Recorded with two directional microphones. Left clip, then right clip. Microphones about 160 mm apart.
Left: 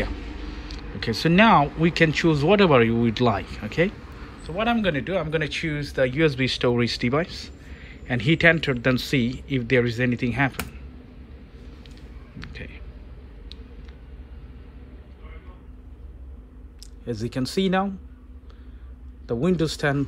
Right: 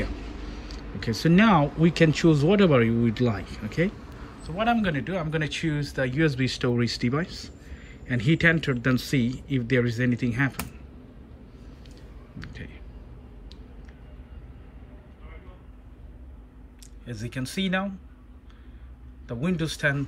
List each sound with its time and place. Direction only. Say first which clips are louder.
0.7 s speech: left 4 dB; 5° left (ahead or behind)
12.4 s a sound: left 3 dB; 5° left (ahead or behind)
17.1 s a man's voice: left 8 dB; 20° left (ahead or behind)
19.4 s a man's voice: left 3 dB; 20° left (ahead or behind)